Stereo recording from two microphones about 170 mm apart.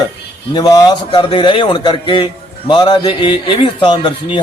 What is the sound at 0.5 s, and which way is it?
A man's voice, 25° left (ahead or behind).